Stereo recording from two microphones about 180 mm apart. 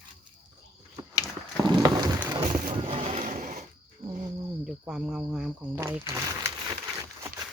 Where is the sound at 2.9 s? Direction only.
40° right (ahead or behind).